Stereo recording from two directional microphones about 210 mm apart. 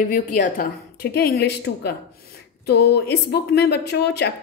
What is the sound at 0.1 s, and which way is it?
A woman's voice, 40° left (ahead or behind).